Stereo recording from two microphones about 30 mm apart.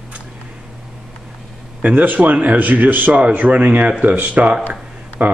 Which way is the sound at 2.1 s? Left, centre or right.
Right.